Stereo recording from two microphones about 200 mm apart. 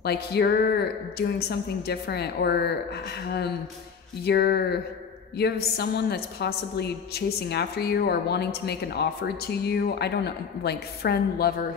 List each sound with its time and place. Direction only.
0.0 s a woman's voice: 55° left (ahead or behind)
4.2 s a woman's voice: 55° left (ahead or behind)